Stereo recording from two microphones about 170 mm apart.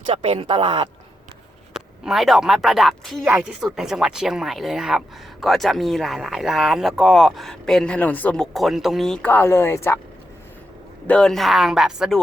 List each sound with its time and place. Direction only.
0.1 s speech: 35° right (ahead or behind)
1.7 s speech: 5° right (ahead or behind); by 10.0 s 15° left (ahead or behind)
11.0 s speech: 5° left (ahead or behind)